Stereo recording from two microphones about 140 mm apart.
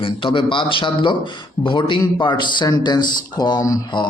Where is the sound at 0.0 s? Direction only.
35° left (ahead or behind).